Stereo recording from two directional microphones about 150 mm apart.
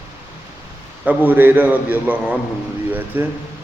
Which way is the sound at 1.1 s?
15° right (ahead or behind).